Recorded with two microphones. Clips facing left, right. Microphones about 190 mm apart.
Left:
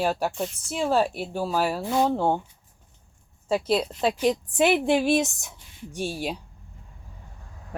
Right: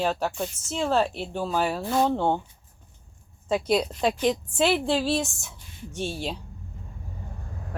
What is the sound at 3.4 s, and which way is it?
Speech, 5° left (ahead or behind).